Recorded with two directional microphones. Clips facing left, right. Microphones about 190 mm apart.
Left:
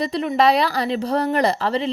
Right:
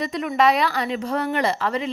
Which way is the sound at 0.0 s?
30° left (ahead or behind).